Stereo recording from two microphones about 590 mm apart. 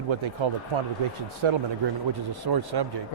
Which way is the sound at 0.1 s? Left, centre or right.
Right.